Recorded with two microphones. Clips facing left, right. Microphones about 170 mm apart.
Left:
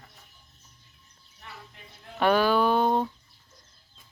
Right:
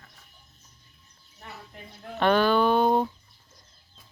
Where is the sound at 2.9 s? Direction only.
10° right (ahead or behind).